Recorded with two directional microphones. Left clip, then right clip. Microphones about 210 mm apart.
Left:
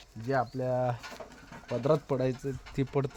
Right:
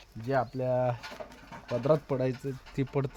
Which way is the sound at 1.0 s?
20° right (ahead or behind).